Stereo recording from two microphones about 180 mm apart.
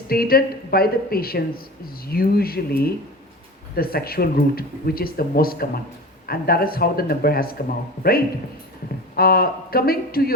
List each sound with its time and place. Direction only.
0.1 s speech: 55° left (ahead or behind)
9.1 s speech: 55° left (ahead or behind)